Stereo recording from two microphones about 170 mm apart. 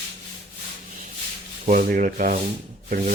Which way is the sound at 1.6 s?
55° right (ahead or behind).